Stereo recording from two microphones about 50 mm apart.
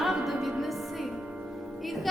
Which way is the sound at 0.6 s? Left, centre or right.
Centre.